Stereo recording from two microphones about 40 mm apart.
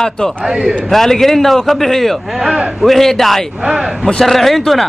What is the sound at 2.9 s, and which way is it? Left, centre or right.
A man's voice, centre.